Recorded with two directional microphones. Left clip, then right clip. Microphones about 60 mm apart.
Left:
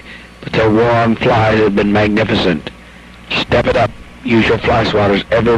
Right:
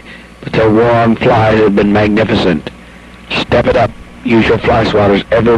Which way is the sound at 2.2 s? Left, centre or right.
Right.